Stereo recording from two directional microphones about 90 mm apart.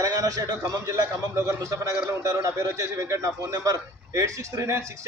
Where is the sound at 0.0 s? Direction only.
40° right (ahead or behind).